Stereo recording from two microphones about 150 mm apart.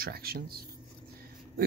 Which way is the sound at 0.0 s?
90° right.